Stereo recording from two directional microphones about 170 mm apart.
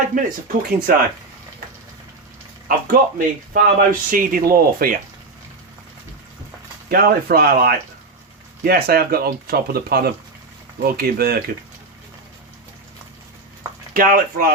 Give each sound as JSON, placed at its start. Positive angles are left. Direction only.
{"t": 0.4, "sound": "speech", "side_deg": -55}
{"t": 2.6, "sound": "speech", "side_deg": -50}
{"t": 6.8, "sound": "speech", "side_deg": -60}
{"t": 13.9, "sound": "speech", "side_deg": -55}